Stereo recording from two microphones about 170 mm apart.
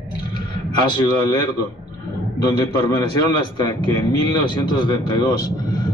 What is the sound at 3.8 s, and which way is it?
A man's voice, 25° left (ahead or behind).